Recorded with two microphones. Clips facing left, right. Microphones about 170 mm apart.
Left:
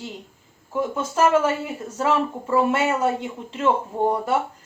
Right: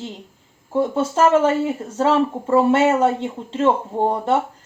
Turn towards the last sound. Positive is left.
turn(degrees=-25)  # may be behind; listen again after turning